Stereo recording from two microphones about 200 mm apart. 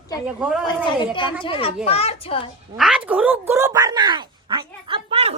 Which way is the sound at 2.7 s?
5° right (ahead or behind).